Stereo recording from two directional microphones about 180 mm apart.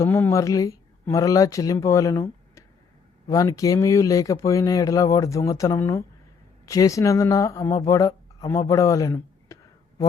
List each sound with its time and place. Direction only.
0.0 s speech: 15° left (ahead or behind)